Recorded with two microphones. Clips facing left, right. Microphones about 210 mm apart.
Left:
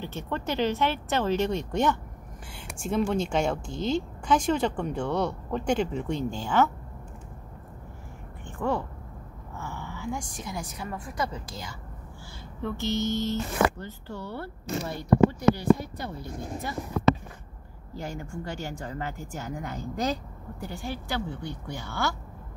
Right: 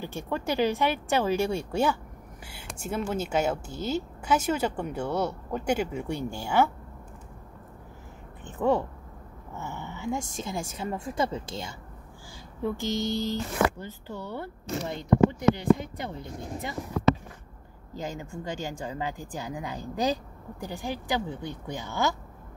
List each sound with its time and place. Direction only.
0.0 s speech: 15° right (ahead or behind)
8.5 s a woman's voice: 20° right (ahead or behind)
12.6 s speech: 15° right (ahead or behind)
17.9 s speech: 15° right (ahead or behind)